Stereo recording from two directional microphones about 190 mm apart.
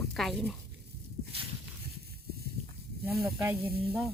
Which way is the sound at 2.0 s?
55° right (ahead or behind).